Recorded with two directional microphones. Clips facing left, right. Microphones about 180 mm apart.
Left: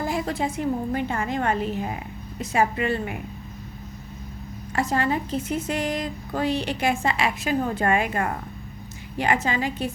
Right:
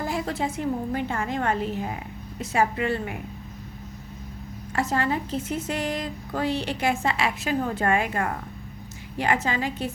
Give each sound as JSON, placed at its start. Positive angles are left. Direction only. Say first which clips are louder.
{"t": 0.0, "sound": "speech", "louder": "left 2 dB", "side_deg": 15}
{"t": 4.7, "sound": "speech", "louder": "left 1 dB", "side_deg": 15}